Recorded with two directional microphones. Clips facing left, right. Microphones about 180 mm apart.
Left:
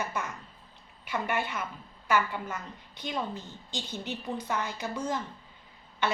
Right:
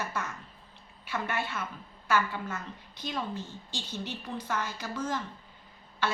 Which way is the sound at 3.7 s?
20° left (ahead or behind).